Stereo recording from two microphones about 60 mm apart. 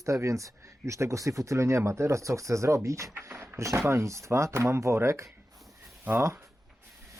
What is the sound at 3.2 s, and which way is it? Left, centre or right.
Speech, right.